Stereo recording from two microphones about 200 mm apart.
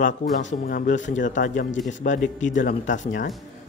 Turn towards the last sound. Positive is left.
turn(degrees=40)  # may be behind; listen again after turning